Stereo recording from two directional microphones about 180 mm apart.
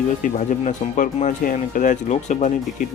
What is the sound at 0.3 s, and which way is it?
A man's voice, 45° left (ahead or behind).